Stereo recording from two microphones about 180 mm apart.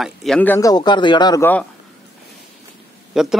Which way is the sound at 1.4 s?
10° left (ahead or behind).